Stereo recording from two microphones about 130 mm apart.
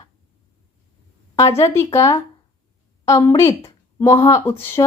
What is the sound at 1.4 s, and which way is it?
A woman's voice, 20° left (ahead or behind).